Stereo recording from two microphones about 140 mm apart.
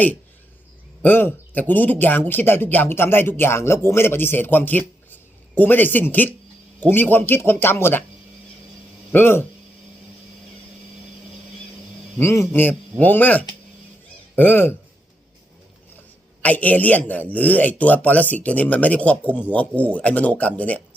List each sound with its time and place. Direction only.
1.0 s a man's voice: 15° left (ahead or behind)
9.1 s a man's voice: 15° left (ahead or behind)
12.2 s a man's voice: 20° left (ahead or behind)
16.4 s a man's voice: 10° left (ahead or behind)